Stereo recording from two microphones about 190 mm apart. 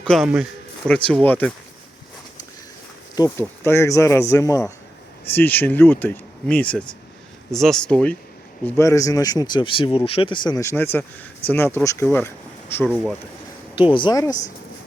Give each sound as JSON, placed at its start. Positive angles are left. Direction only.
{"t": 0.0, "sound": "a man's voice", "side_deg": 0}
{"t": 3.2, "sound": "speech", "side_deg": 15}
{"t": 13.7, "sound": "speech", "side_deg": 25}